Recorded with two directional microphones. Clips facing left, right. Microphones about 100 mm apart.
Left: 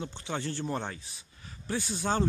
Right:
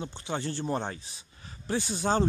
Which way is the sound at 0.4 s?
20° right (ahead or behind).